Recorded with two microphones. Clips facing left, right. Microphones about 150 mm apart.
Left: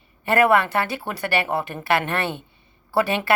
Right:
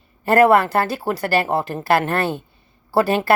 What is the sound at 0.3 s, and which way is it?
A woman's voice, 40° right (ahead or behind).